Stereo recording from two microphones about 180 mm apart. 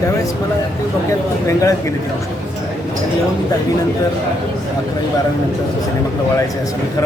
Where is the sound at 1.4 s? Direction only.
20° left (ahead or behind).